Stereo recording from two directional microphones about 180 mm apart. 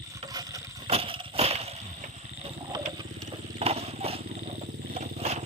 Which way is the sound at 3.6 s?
35° right (ahead or behind).